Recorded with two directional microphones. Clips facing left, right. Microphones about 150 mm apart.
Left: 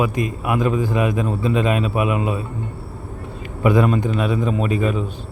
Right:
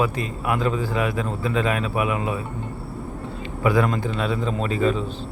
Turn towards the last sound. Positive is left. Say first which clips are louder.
# left 2 dB
turn(degrees=15)  # may be behind; listen again after turning